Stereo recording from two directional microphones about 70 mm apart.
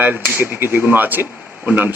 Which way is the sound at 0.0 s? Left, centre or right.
Right.